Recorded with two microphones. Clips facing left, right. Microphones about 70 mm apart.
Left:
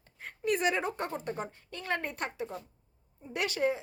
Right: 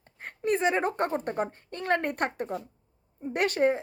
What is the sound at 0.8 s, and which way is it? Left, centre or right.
A woman's voice, right.